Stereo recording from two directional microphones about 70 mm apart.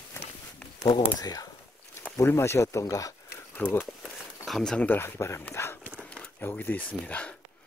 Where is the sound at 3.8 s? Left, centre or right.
Centre.